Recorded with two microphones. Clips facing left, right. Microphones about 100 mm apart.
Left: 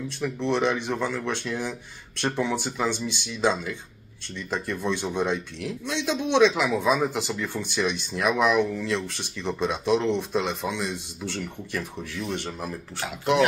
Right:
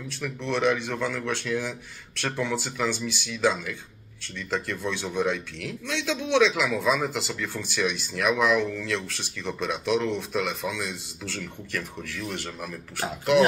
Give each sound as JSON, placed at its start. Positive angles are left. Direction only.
{"t": 0.2, "sound": "speech", "side_deg": 20}